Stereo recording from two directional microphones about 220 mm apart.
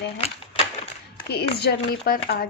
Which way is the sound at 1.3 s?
45° left (ahead or behind).